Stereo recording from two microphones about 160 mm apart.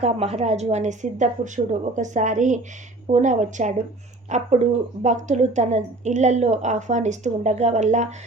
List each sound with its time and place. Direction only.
0.0 s a woman's voice: 40° right (ahead or behind)